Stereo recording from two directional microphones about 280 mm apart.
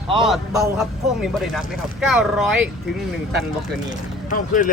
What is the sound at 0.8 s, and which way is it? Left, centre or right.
Speech, centre.